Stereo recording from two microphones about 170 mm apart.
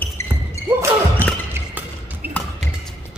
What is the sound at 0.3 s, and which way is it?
Basketball bounce, 10° right (ahead or behind).